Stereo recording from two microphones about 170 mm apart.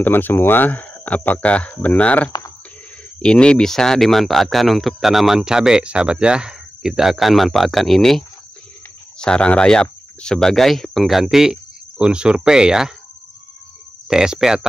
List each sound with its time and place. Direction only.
0.0 s speech: 10° left (ahead or behind)
9.2 s speech: 5° left (ahead or behind)
14.0 s speech: 5° right (ahead or behind)